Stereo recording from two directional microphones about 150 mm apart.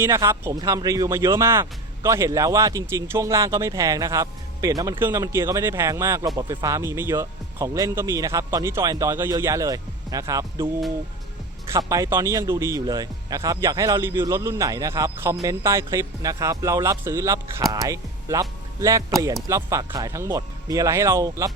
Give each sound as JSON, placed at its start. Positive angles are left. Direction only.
{"t": 0.0, "sound": "speech", "side_deg": -15}
{"t": 11.7, "sound": "speech", "side_deg": -20}